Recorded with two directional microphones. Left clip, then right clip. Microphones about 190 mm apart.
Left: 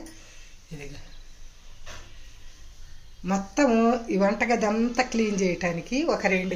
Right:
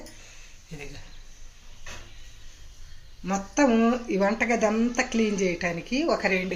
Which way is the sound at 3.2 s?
Centre (ahead or behind).